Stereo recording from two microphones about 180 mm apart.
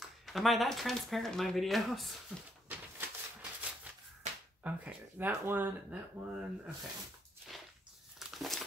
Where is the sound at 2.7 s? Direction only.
10° right (ahead or behind).